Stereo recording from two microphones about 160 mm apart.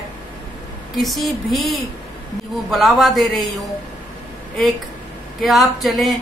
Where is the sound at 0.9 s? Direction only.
Centre (ahead or behind).